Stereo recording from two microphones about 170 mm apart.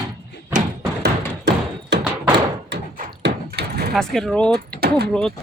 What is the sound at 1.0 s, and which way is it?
Music, 80° right.